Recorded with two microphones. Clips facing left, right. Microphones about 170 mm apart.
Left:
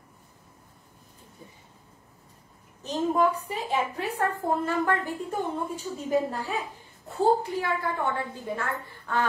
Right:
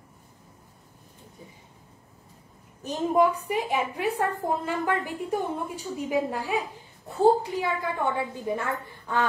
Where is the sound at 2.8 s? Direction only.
10° right (ahead or behind).